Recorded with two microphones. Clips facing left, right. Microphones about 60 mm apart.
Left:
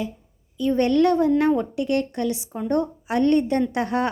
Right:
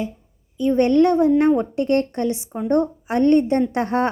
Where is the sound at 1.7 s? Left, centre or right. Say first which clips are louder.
Right 4 dB; right.